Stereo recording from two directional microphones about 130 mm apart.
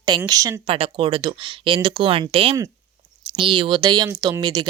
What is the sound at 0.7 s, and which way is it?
Speech, 45° right (ahead or behind).